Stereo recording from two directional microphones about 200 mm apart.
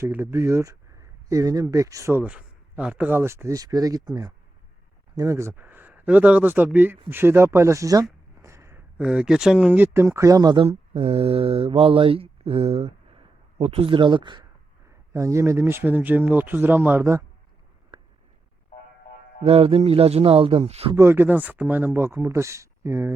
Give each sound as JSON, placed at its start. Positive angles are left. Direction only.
{"t": 0.0, "sound": "speech", "side_deg": -10}
{"t": 17.9, "sound": "a sound", "side_deg": -20}
{"t": 19.5, "sound": "a man's voice", "side_deg": -30}
{"t": 20.9, "sound": "speech", "side_deg": -10}